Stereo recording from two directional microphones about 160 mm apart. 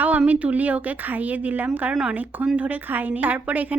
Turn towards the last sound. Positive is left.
turn(degrees=-10)  # may be behind; listen again after turning